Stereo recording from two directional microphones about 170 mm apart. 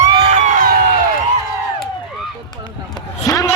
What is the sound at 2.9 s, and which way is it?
Basketball bounce, 20° left (ahead or behind).